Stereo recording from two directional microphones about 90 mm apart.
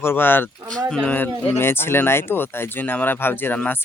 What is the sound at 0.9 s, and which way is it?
Speech, 5° left (ahead or behind).